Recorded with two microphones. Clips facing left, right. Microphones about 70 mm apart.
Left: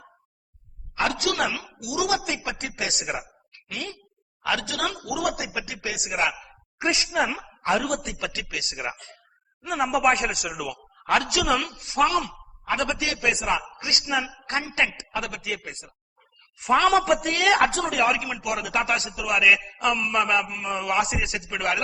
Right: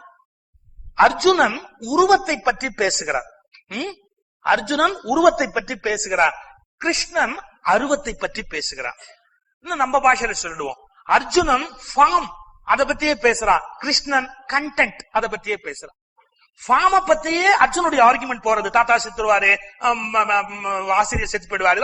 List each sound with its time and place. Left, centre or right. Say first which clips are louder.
0.9 s a woman's voice: right 10 dB; right
9.6 s a woman's voice: right 5 dB; right
10.8 s a man's voice: right 6 dB; right
11.8 s a woman's voice: right 7 dB; right